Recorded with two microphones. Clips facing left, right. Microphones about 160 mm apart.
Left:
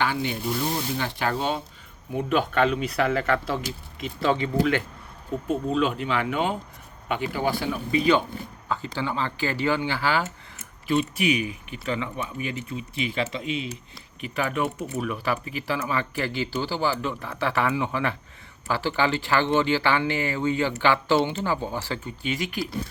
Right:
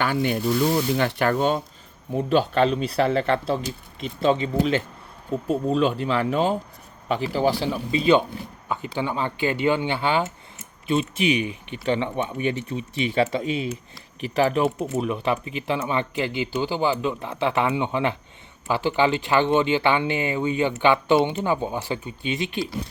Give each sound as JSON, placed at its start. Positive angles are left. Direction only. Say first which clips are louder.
{"t": 0.0, "sound": "speech", "louder": "right 4 dB", "side_deg": -50}
{"t": 2.1, "sound": "speech", "louder": "right 3 dB", "side_deg": -30}
{"t": 5.5, "sound": "speech", "louder": "right 3 dB", "side_deg": -35}